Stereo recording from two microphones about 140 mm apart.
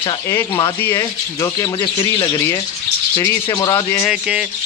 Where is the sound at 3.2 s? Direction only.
25° left (ahead or behind).